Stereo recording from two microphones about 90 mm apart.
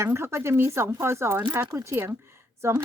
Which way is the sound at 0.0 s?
30° right (ahead or behind).